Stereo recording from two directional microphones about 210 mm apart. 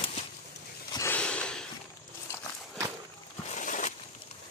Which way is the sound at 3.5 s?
35° left (ahead or behind).